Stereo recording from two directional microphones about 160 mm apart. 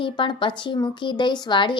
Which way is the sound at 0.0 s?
30° left (ahead or behind).